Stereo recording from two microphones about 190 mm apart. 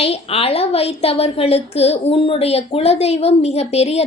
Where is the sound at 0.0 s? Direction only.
30° left (ahead or behind).